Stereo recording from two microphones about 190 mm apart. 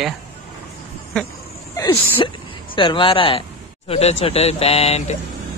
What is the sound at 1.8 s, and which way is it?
Speech, 25° left (ahead or behind).